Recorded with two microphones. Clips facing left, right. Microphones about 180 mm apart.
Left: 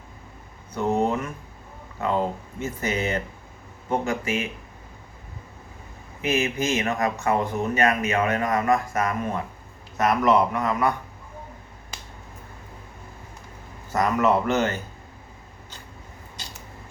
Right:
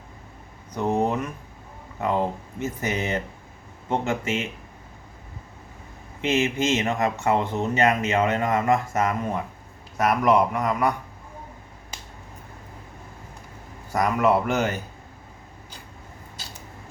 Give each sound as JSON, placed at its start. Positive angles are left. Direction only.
{"t": 0.7, "sound": "a sound", "side_deg": -15}
{"t": 2.0, "sound": "speech", "side_deg": -15}
{"t": 6.2, "sound": "speech", "side_deg": -25}
{"t": 10.0, "sound": "speech", "side_deg": -10}
{"t": 13.9, "sound": "speech", "side_deg": -10}